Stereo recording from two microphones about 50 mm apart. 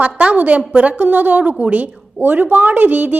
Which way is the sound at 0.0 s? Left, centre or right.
Right.